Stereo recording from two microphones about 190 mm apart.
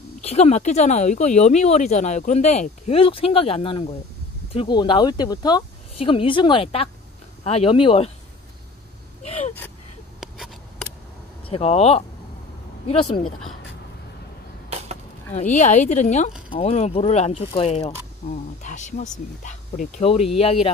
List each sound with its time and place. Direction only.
0.2 s speech: 35° left (ahead or behind)
9.2 s gasp: 35° left (ahead or behind)
10.2 s a sound: centre (ahead or behind)
11.4 s speech: 30° left (ahead or behind)
13.2 s speech: 5° left (ahead or behind)
15.3 s speech: 40° left (ahead or behind)